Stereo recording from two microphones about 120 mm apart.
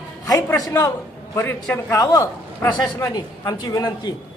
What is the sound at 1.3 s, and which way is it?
A man's voice, 20° left (ahead or behind).